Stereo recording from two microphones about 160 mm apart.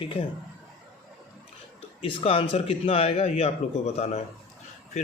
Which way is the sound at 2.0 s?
35° left (ahead or behind).